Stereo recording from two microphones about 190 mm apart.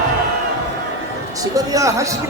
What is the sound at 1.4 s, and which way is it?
Speech, 20° right (ahead or behind).